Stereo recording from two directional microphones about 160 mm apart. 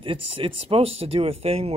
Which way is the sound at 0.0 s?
35° right (ahead or behind).